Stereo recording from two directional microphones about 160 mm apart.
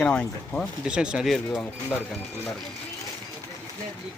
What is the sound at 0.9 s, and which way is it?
Speech, 5° right (ahead or behind).